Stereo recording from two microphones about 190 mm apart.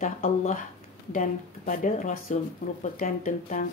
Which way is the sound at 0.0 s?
40° left (ahead or behind).